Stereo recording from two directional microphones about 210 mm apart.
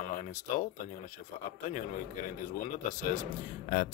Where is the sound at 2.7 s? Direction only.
35° left (ahead or behind).